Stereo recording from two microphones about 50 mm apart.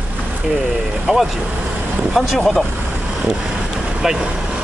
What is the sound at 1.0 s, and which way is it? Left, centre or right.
Speech, centre.